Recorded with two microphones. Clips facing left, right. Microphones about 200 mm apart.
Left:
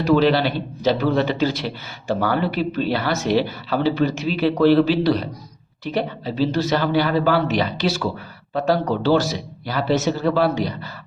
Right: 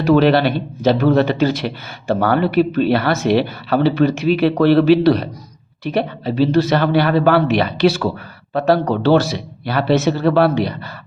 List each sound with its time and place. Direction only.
0.0 s a man's voice: 55° right (ahead or behind)